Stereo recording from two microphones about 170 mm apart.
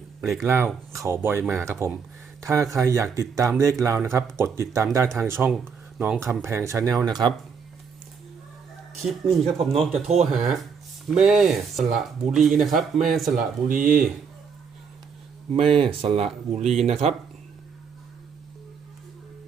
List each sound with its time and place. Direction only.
0.2 s speech: centre (ahead or behind)
0.4 s speech: 15° right (ahead or behind)
9.3 s speech: centre (ahead or behind)
13.3 s speech: 50° right (ahead or behind)
15.5 s speech: 30° right (ahead or behind)